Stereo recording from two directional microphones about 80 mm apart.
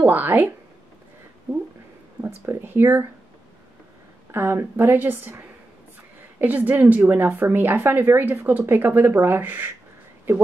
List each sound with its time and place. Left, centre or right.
0.0 s a woman's voice: right
2.2 s a woman's voice: right
4.3 s a woman's voice: right
6.4 s a woman's voice: right